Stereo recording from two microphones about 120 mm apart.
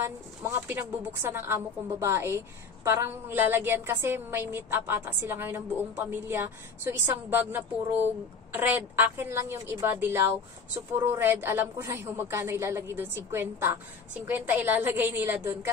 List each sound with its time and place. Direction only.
0.0 s a woman's voice: 20° right (ahead or behind)